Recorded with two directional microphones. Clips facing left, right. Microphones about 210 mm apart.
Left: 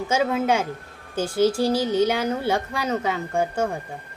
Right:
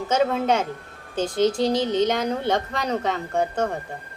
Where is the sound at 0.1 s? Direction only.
5° left (ahead or behind).